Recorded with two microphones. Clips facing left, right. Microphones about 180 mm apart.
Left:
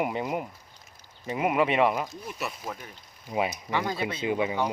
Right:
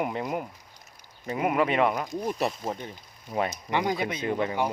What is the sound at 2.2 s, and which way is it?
Speech, 35° right (ahead or behind).